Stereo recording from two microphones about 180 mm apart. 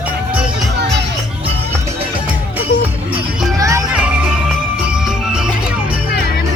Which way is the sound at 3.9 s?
5° right (ahead or behind).